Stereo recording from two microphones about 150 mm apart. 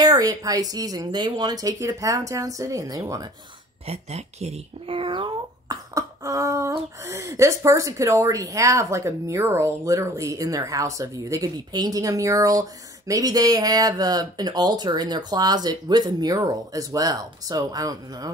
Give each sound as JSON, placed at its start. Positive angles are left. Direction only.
{"t": 0.0, "sound": "speech", "side_deg": -25}
{"t": 3.8, "sound": "speech", "side_deg": -45}